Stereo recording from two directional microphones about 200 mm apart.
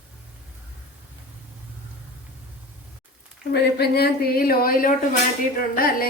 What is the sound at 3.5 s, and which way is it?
A woman's voice, 55° left (ahead or behind).